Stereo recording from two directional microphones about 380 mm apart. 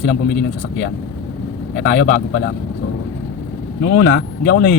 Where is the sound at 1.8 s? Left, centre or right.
Left.